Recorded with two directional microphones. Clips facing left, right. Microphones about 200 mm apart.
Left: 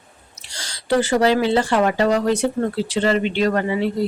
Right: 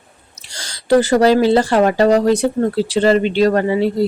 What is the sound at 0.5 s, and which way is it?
Speech, 45° right (ahead or behind).